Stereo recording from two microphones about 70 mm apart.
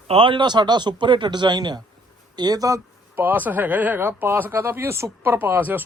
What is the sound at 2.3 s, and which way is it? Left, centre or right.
Speech, right.